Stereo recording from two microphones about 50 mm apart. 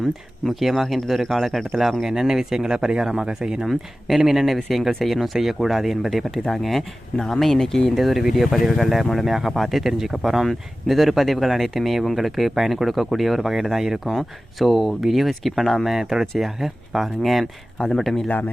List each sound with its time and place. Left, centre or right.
0.0 s speech: centre
7.9 s speech: centre
17.4 s speech: centre
17.9 s speech: centre
18.3 s speech: left